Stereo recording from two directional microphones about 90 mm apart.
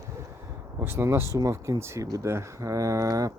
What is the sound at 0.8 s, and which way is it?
Speech, 30° right (ahead or behind).